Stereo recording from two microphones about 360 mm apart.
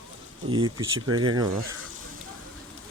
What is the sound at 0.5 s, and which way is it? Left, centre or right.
Insect, centre.